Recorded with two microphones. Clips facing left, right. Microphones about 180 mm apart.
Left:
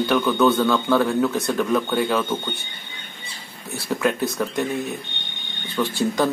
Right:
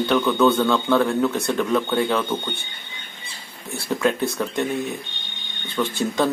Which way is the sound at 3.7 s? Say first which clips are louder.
Right 1 dB; centre (ahead or behind).